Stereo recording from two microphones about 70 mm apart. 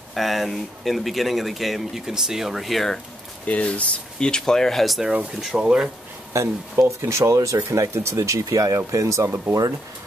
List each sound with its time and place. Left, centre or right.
0.1 s speech: centre
3.4 s speech: centre
5.6 s speech: centre
6.4 s speech: right